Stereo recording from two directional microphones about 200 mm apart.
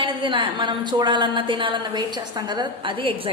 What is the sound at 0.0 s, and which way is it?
A woman's voice, 25° right (ahead or behind).